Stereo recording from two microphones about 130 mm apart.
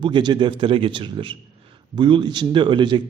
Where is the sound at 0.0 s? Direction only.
35° right (ahead or behind).